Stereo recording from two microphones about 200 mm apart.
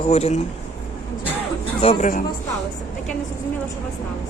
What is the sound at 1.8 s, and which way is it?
Speech, 30° left (ahead or behind).